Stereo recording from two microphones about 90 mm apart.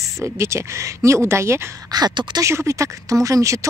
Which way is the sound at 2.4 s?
30° right (ahead or behind).